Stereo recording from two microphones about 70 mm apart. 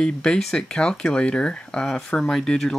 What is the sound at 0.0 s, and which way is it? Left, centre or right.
Speech, centre.